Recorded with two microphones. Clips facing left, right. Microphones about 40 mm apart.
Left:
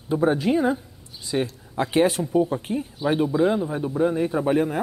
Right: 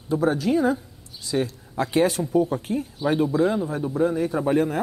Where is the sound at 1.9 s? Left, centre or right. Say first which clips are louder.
Left 1 dB; left.